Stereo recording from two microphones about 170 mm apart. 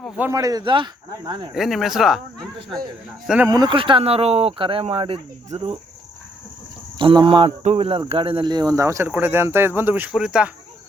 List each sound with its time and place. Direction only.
0.2 s speech: 15° right (ahead or behind)
1.5 s speech: centre (ahead or behind)
2.6 s speech: 25° right (ahead or behind)
3.2 s speech: 10° right (ahead or behind)
3.5 s speech: 25° right (ahead or behind)
7.0 s speech: 30° right (ahead or behind)
7.6 s speech: 40° right (ahead or behind); by 10.5 s 5° right (ahead or behind)